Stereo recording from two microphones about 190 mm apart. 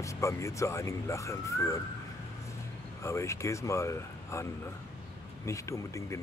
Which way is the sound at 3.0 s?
15° left (ahead or behind).